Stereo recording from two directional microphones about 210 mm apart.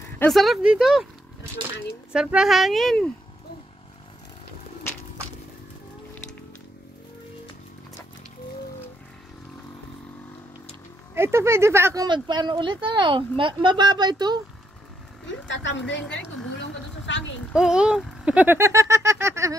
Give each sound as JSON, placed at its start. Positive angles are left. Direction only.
{"t": 0.2, "sound": "a child's voice", "side_deg": 0}
{"t": 2.1, "sound": "a child's voice", "side_deg": -5}
{"t": 11.1, "sound": "speech", "side_deg": -10}
{"t": 15.4, "sound": "a woman's voice", "side_deg": 55}
{"t": 17.5, "sound": "speech", "side_deg": -5}